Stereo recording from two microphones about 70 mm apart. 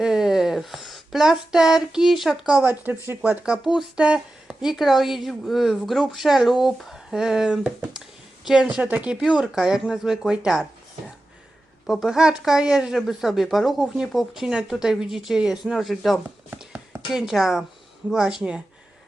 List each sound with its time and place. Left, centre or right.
0.0 s speech: centre
2.6 s speech: right
3.2 s speech: centre
8.8 s speech: right
11.9 s speech: centre